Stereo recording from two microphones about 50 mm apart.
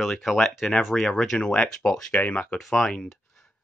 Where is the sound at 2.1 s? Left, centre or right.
Left.